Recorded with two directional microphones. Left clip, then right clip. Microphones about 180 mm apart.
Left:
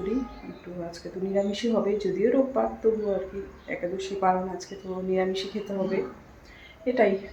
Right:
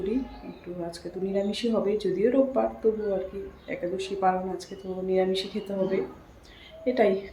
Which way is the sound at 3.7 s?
5° right (ahead or behind).